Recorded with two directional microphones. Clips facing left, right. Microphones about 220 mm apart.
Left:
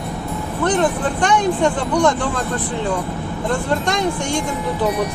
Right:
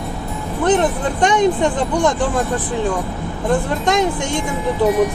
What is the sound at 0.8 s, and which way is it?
Speech, 20° right (ahead or behind).